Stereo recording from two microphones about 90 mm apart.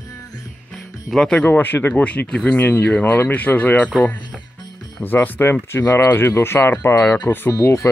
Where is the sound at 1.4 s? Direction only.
20° left (ahead or behind).